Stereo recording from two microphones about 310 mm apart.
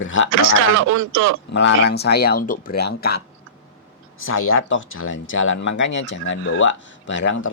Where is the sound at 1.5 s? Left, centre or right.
Left.